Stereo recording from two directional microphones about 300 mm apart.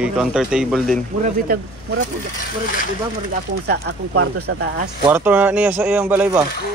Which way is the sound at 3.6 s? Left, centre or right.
Right.